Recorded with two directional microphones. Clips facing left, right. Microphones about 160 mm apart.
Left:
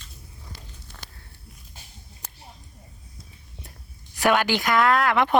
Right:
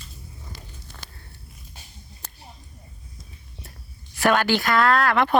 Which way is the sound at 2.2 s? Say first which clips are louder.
Even; 10° left (ahead or behind).